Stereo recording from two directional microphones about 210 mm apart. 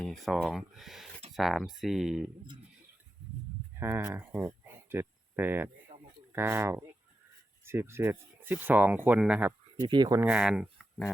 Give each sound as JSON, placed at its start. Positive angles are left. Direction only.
{"t": 0.0, "sound": "speech", "side_deg": 0}
{"t": 3.8, "sound": "speech", "side_deg": -10}
{"t": 9.8, "sound": "speech", "side_deg": -20}
{"t": 10.2, "sound": "speech", "side_deg": -5}